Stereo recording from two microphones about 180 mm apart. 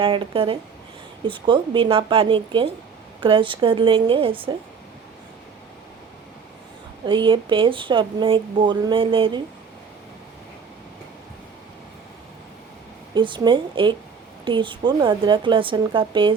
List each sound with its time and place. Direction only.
0.0 s speech: 30° right (ahead or behind)
7.0 s speech: 25° right (ahead or behind)
13.1 s speech: 25° right (ahead or behind)